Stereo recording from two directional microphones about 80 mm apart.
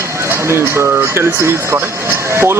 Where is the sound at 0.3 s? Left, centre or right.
Right.